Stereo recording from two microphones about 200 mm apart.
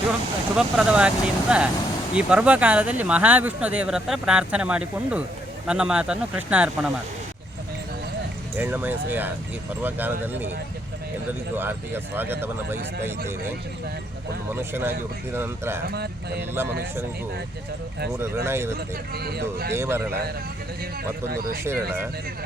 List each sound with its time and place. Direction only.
0.5 s speech: 5° right (ahead or behind)
8.5 s speech: 10° right (ahead or behind)
14.5 s speech: 10° right (ahead or behind)
15.9 s speech: 55° right (ahead or behind)
18.2 s speech: 10° right (ahead or behind)
19.1 s speech: 50° right (ahead or behind)
19.7 s speech: 10° right (ahead or behind)
21.2 s speech: 50° right (ahead or behind)
21.6 s speech: 10° right (ahead or behind)